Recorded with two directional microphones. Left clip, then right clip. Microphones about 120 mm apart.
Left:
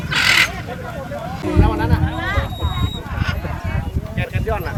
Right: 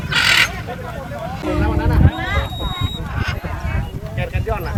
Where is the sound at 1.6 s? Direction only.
35° left (ahead or behind).